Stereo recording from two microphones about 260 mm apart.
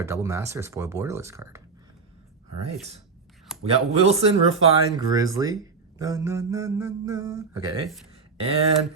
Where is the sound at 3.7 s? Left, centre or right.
Right.